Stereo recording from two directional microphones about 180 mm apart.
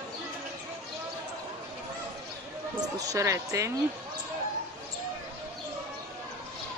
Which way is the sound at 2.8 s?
20° right (ahead or behind).